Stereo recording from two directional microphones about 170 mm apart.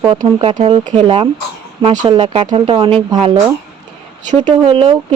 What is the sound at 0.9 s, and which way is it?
Speech, 35° right (ahead or behind).